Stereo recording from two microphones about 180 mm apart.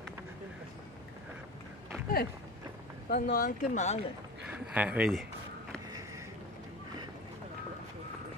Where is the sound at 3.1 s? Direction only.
55° left (ahead or behind); by 4.0 s 40° left (ahead or behind).